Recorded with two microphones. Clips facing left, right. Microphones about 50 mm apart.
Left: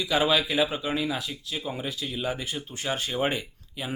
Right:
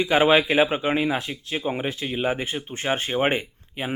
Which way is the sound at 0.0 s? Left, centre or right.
Right.